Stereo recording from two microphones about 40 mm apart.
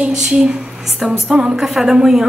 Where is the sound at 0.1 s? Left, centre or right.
Centre.